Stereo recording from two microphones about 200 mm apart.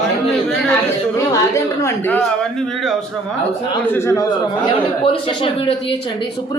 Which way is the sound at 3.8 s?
10° left (ahead or behind).